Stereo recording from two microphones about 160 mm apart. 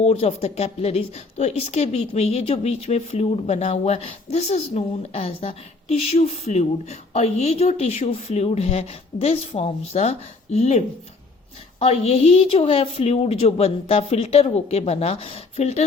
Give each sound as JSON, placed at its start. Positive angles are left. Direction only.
{"t": 0.0, "sound": "speech", "side_deg": 40}